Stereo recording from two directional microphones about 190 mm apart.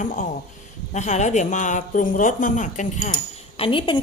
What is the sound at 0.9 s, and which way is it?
Speech, 35° left (ahead or behind).